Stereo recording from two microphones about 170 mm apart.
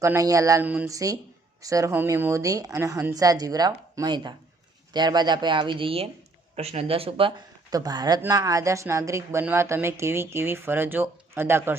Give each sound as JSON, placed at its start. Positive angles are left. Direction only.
{"t": 0.0, "sound": "a woman's voice", "side_deg": -20}